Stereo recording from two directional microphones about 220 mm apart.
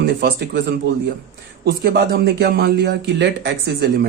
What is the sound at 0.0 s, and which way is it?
Speech, 50° right (ahead or behind).